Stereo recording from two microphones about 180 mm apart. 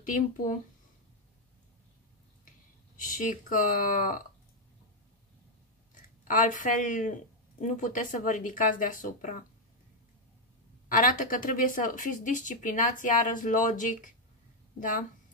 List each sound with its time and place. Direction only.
0.0 s speech: 50° left (ahead or behind)
3.0 s speech: 45° left (ahead or behind)
5.9 s speech: 50° left (ahead or behind)
10.9 s speech: 50° left (ahead or behind)